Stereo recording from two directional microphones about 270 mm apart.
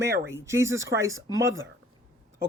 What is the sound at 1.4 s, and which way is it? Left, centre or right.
Speech, right.